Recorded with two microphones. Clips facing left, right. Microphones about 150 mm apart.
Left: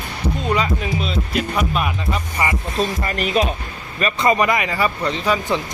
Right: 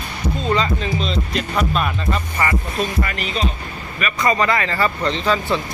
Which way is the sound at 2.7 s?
30° left (ahead or behind).